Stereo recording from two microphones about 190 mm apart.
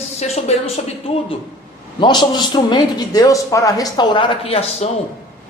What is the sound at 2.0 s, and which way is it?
Speech, 25° left (ahead or behind).